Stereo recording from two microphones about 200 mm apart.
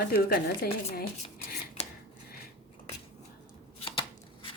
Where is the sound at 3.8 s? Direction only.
25° left (ahead or behind).